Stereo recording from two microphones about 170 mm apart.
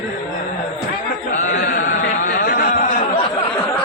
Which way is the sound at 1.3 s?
45° left (ahead or behind).